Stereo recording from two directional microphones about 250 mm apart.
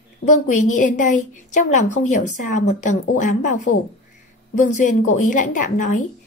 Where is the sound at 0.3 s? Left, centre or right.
Left.